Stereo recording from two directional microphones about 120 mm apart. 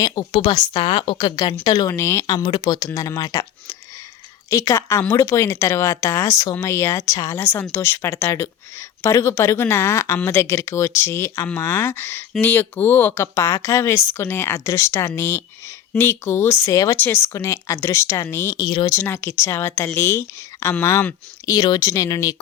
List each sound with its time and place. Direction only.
0.3 s speech: 40° left (ahead or behind)
2.0 s speech: 20° left (ahead or behind)
2.2 s speech: 35° left (ahead or behind); by 18.6 s 20° left (ahead or behind)
18.6 s speech: 35° left (ahead or behind)
18.9 s speech: 20° left (ahead or behind)